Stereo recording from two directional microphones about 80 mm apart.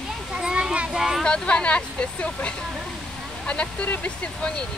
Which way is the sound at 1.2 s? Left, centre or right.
Centre.